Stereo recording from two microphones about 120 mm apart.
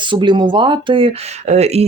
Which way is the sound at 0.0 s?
40° right (ahead or behind).